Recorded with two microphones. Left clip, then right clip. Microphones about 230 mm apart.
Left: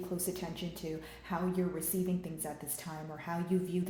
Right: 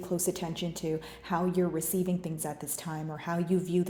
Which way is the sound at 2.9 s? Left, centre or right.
Right.